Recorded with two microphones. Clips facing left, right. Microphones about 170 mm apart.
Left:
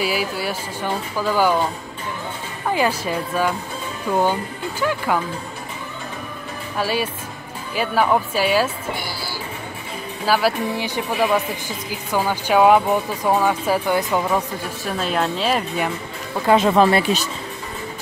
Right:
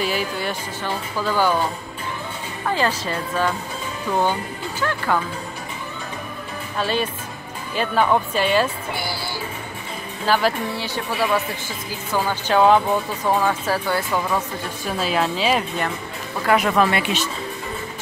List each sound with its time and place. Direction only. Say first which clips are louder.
0.0 s speech: left 1 dB; 5° left (ahead or behind)
2.7 s speech: left 2 dB; 10° left (ahead or behind)
6.8 s speech: even; 10° left (ahead or behind)
10.2 s speech: left 1 dB; 10° left (ahead or behind)
14.9 s a woman's voice: even; centre (ahead or behind)
16.4 s speech: left 3 dB; 25° left (ahead or behind)